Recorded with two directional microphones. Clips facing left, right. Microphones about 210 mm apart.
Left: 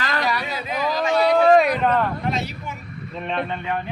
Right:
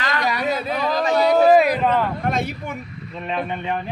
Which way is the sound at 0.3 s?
45° right (ahead or behind).